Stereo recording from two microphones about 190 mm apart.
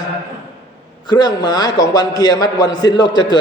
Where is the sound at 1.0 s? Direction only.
20° left (ahead or behind).